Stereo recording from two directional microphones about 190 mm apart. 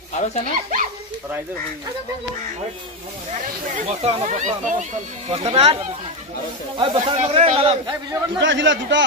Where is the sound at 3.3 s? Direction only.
40° right (ahead or behind).